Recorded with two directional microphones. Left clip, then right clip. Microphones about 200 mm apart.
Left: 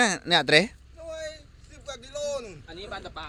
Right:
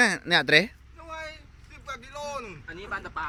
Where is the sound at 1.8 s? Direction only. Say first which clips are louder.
Left 3 dB; 40° right (ahead or behind).